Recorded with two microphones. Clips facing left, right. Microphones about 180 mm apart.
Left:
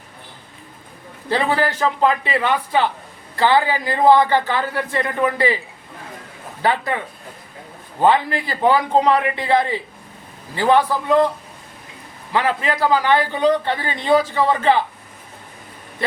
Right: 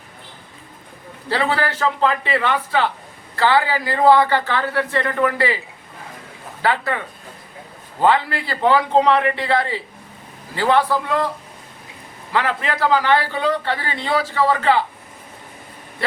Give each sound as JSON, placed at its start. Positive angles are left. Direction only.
{"t": 1.3, "sound": "a man's voice", "side_deg": 15}
{"t": 6.6, "sound": "a man's voice", "side_deg": 15}
{"t": 8.0, "sound": "a man's voice", "side_deg": 15}
{"t": 12.3, "sound": "a man's voice", "side_deg": 15}